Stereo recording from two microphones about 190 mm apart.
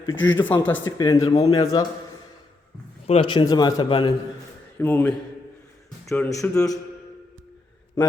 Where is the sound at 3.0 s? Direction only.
30° left (ahead or behind).